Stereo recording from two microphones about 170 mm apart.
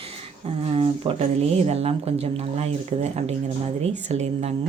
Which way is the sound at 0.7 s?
30° right (ahead or behind).